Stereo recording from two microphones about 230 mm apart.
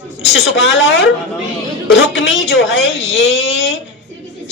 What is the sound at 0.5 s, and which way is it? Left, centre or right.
Speech, left.